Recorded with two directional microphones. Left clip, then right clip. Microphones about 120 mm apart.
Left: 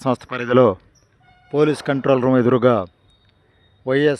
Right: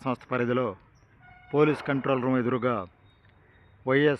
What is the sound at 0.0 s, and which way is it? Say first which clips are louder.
Speech: left 10 dB; 90° left.